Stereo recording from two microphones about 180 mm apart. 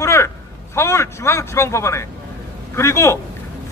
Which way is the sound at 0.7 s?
15° left (ahead or behind).